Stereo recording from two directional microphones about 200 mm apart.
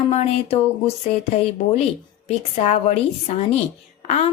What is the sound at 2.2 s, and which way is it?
Speech, 35° left (ahead or behind).